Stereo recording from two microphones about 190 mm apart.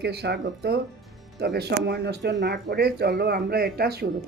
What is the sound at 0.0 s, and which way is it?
Speech, 60° right (ahead or behind).